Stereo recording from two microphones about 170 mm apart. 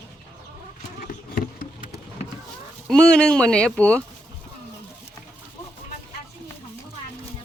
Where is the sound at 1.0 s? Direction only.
55° left (ahead or behind).